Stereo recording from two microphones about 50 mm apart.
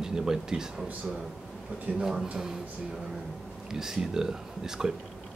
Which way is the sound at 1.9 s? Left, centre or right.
Right.